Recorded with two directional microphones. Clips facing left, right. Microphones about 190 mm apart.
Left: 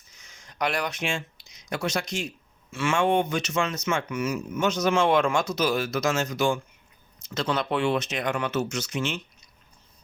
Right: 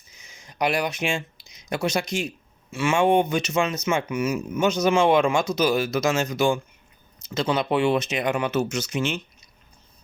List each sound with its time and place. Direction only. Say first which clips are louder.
0.1 s speech: right 3 dB; 5° right (ahead or behind)
2.7 s speech: right 3 dB; 15° right (ahead or behind)
4.6 s speech: right 3 dB; centre (ahead or behind)